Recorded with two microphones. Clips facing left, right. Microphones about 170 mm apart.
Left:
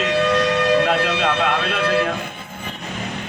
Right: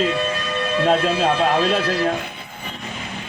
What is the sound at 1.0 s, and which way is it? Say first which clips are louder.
Speech: right 1 dB; 70° left (ahead or behind).